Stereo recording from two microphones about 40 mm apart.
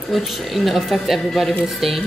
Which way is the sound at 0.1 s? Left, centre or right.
Centre.